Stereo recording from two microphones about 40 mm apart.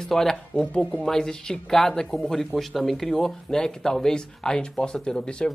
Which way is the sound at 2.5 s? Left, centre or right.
Centre.